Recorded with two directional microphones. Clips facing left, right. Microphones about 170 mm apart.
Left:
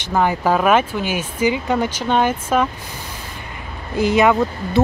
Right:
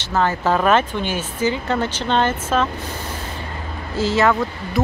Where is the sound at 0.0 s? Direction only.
15° left (ahead or behind).